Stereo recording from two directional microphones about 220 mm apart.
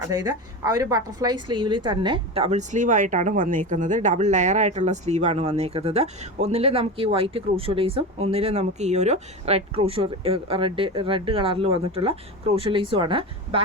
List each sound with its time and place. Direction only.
0.1 s a woman's voice: 15° right (ahead or behind)